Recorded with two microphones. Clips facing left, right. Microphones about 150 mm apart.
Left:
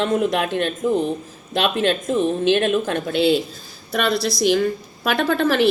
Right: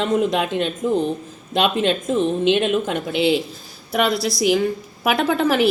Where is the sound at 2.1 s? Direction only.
20° right (ahead or behind).